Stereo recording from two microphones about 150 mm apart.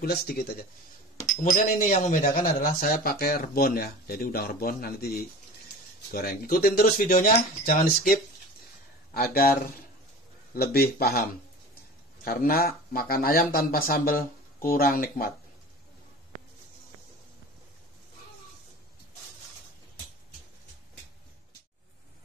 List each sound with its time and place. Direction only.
0.0 s a man's voice: 90° left
1.3 s speech: 60° left (ahead or behind); by 9.7 s 80° left
10.5 s a man's voice: 90° left
12.3 s speech: 85° left